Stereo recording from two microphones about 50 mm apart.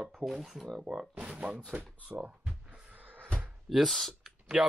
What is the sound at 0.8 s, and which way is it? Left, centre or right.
Speech, centre.